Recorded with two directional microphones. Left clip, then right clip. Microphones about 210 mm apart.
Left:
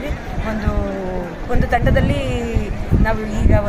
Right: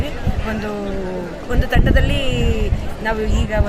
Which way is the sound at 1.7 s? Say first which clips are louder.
Left 2 dB; centre (ahead or behind).